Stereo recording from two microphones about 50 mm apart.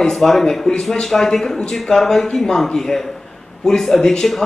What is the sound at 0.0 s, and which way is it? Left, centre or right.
Speech, centre.